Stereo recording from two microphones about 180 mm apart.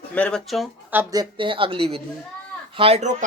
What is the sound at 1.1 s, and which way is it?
Speech, 25° right (ahead or behind).